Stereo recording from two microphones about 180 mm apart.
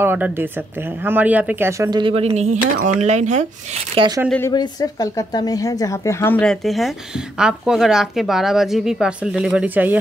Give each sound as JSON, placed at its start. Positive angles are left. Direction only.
{"t": 0.0, "sound": "speech", "side_deg": -10}
{"t": 3.9, "sound": "speech", "side_deg": -30}
{"t": 4.5, "sound": "speech", "side_deg": 20}